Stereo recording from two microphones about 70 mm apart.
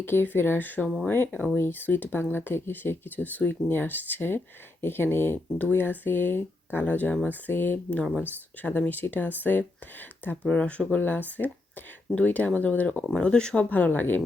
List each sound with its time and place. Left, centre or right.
0.0 s speech: left
7.9 s speech: centre
8.2 s speech: left
13.7 s speech: left